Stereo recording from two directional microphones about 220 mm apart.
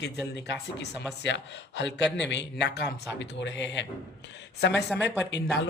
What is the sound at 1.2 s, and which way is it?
Speech, 50° left (ahead or behind).